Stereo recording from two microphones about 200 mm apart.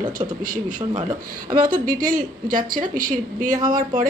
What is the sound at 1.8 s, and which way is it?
Speech, 45° right (ahead or behind).